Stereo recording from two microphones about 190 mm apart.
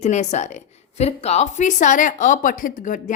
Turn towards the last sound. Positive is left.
turn(degrees=45)  # may be behind; listen again after turning